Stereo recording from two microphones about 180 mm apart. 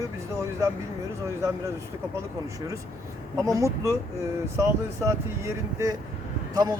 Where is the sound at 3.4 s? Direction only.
20° right (ahead or behind).